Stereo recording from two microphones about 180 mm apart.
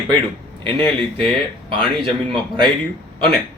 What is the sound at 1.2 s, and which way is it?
Speech, 5° left (ahead or behind).